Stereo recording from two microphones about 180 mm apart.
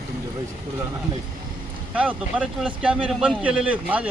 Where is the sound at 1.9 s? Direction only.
5° right (ahead or behind).